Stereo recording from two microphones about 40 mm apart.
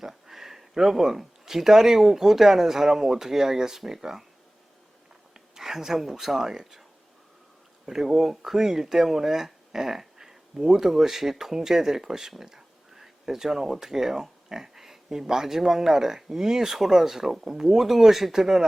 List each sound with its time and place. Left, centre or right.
0.0 s speech: centre
5.3 s speech: centre
7.9 s speech: centre